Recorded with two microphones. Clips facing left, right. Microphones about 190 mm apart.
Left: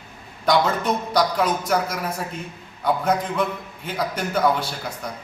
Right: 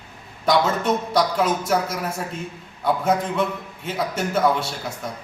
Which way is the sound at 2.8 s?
Centre (ahead or behind).